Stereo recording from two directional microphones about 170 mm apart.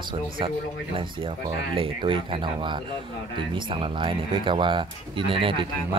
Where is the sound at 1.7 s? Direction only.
30° right (ahead or behind).